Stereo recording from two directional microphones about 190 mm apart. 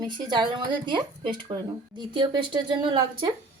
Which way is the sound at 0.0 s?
25° right (ahead or behind).